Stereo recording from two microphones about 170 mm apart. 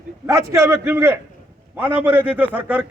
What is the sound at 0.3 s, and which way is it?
A man's voice, 20° right (ahead or behind).